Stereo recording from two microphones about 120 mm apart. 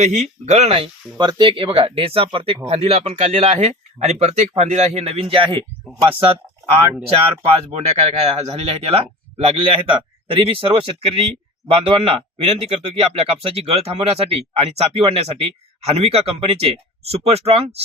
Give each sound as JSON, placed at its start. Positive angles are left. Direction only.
{"t": 0.0, "sound": "speech", "side_deg": -75}
{"t": 1.2, "sound": "speech", "side_deg": -40}
{"t": 7.7, "sound": "speech", "side_deg": -60}